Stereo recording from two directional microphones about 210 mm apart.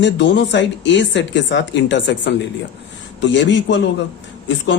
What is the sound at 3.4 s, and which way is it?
Speech, 60° left (ahead or behind).